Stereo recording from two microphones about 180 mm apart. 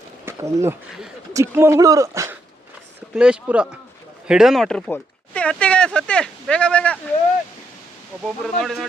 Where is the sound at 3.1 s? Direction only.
5° right (ahead or behind).